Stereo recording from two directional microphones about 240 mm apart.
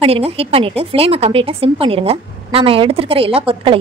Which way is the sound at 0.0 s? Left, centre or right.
Right.